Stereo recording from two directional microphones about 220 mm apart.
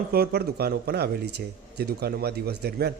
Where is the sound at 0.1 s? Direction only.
45° right (ahead or behind).